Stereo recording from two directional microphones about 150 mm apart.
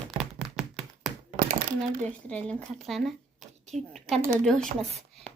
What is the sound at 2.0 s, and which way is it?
A woman's voice, 5° left (ahead or behind).